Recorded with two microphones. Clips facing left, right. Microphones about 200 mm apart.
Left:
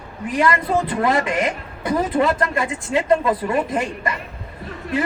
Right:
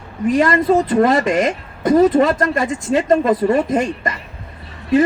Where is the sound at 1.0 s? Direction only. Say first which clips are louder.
Right 5 dB; 40° right (ahead or behind).